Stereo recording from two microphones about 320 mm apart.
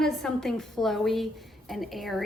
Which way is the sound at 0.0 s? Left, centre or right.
Centre.